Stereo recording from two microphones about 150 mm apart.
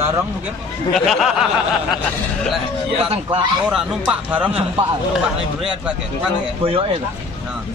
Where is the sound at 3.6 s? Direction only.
5° right (ahead or behind).